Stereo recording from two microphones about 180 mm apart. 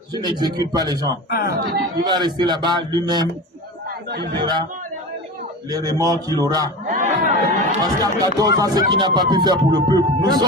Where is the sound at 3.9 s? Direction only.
60° right (ahead or behind).